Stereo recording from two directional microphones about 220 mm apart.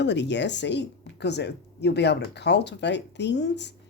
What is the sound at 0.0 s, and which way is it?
Speech, 55° left (ahead or behind).